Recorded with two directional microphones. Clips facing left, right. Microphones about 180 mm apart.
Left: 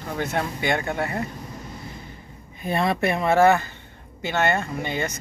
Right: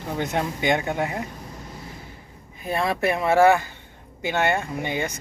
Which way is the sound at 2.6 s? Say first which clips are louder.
Left 1 dB; 5° right (ahead or behind).